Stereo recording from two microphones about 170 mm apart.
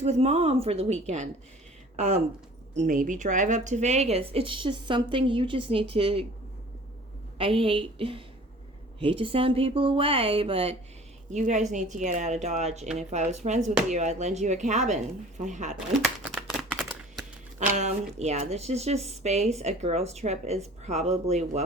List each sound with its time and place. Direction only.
0.0 s speech: 40° right (ahead or behind)
2.8 s speech: 50° right (ahead or behind); by 6.2 s 35° right (ahead or behind)
7.3 s speech: 30° right (ahead or behind)
11.3 s speech: 45° right (ahead or behind)
15.9 s a sound: centre (ahead or behind)
17.7 s speech: 40° right (ahead or behind)